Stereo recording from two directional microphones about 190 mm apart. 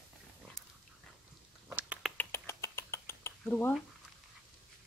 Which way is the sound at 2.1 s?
15° left (ahead or behind).